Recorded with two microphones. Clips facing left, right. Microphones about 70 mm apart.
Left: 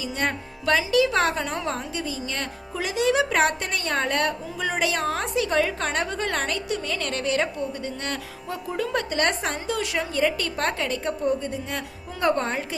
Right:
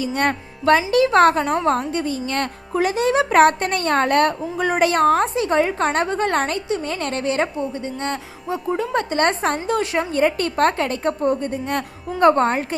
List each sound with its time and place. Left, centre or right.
0.0 s speech: right